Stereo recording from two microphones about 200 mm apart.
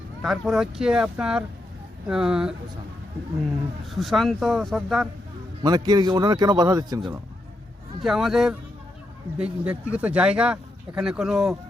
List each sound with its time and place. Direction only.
0.2 s speech: centre (ahead or behind)
3.8 s speech: centre (ahead or behind)
5.6 s a man's voice: 20° right (ahead or behind)
8.0 s speech: centre (ahead or behind)